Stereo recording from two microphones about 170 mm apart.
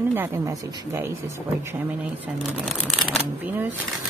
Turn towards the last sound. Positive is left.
turn(degrees=-10)  # may be behind; listen again after turning